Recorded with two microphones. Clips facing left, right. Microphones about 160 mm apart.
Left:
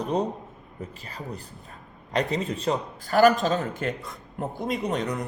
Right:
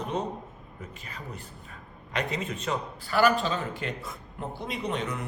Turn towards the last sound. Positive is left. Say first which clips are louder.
# left 4 dB
turn(degrees=40)  # may be behind; listen again after turning